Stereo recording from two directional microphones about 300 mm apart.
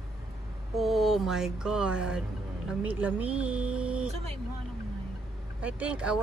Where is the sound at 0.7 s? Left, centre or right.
Centre.